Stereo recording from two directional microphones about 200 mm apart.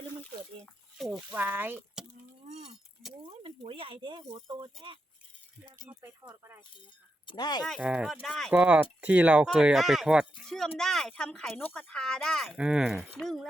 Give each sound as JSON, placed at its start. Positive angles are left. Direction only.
{"t": 0.6, "sound": "speech", "side_deg": 0}
{"t": 2.5, "sound": "livestock", "side_deg": -30}
{"t": 3.2, "sound": "speech", "side_deg": -30}
{"t": 7.3, "sound": "speech", "side_deg": 20}
{"t": 7.6, "sound": "speech", "side_deg": 0}